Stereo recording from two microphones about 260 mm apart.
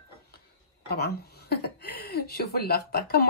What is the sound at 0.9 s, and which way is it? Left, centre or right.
Speech, left.